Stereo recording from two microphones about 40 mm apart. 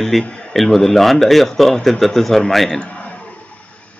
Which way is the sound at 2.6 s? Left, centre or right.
Left.